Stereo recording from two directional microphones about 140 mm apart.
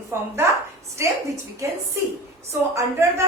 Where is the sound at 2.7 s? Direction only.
20° right (ahead or behind).